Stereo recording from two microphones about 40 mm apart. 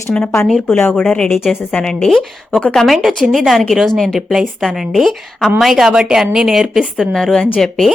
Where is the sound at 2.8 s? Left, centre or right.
Centre.